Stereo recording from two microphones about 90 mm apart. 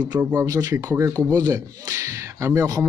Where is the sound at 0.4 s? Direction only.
40° right (ahead or behind).